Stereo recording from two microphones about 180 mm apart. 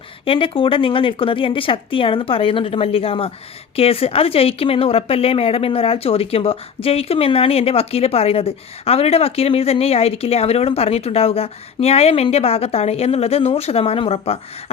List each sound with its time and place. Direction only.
0.3 s speech: 30° left (ahead or behind)